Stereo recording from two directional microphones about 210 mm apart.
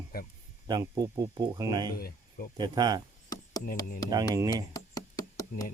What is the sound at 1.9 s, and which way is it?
Speech, 45° left (ahead or behind).